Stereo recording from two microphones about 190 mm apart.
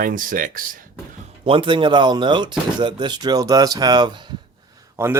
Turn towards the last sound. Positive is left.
turn(degrees=-15)  # may be behind; listen again after turning